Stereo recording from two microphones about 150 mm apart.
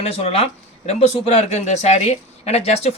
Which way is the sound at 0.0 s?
40° left (ahead or behind).